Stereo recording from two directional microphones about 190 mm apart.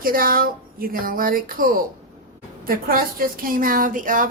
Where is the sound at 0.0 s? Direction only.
50° right (ahead or behind).